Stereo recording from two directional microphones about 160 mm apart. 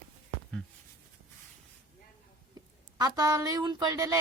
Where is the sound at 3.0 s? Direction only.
25° right (ahead or behind).